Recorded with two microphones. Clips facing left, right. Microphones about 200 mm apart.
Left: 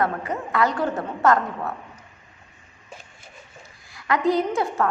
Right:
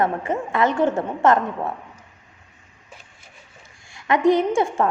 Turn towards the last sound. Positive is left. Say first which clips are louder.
# right 3 dB
turn(degrees=-25)  # may be behind; listen again after turning